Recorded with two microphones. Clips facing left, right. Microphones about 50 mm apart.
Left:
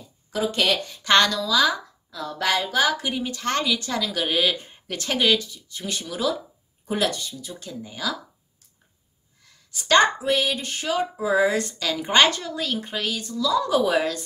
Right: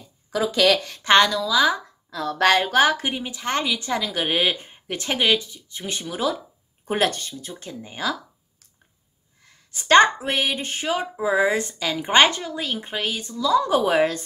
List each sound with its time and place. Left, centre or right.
1.2 s a woman's voice: centre
2.0 s speech: right
2.8 s speech: right
3.2 s a woman's voice: centre
6.9 s speech: right
9.4 s a woman's voice: right